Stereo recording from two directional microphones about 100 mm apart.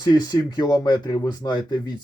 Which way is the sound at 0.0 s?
45° left (ahead or behind).